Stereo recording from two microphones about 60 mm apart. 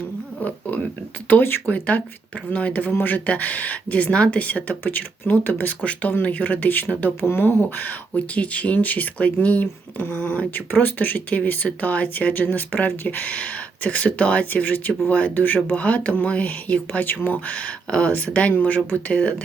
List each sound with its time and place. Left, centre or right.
0.3 s a sound: left
1.3 s speech: left
2.9 s speech: left
15.7 s speech: left
17.5 s speech: left